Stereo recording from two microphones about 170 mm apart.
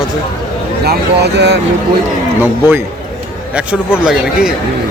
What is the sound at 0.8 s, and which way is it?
Speech, 75° right (ahead or behind).